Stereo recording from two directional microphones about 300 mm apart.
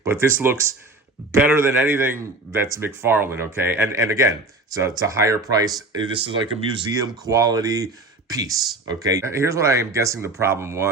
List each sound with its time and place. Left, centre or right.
0.0 s a man's voice: centre